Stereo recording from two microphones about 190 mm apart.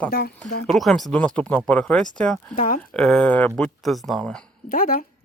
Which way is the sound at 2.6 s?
45° left (ahead or behind).